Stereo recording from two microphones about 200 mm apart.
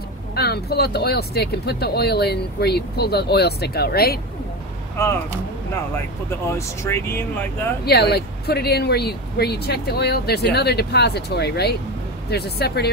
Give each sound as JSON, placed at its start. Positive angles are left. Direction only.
{"t": 0.4, "sound": "speech", "side_deg": 50}
{"t": 5.9, "sound": "speech", "side_deg": 15}
{"t": 7.8, "sound": "speech", "side_deg": 50}